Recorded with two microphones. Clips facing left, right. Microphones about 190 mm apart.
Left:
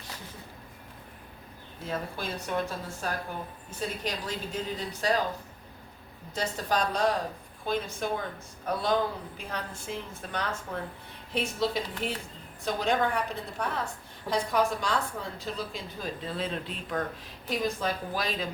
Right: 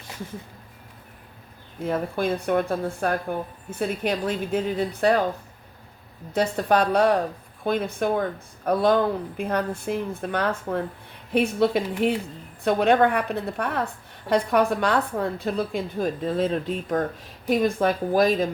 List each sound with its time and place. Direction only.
1.9 s a woman's voice: 55° right (ahead or behind)
6.3 s a woman's voice: 60° right (ahead or behind)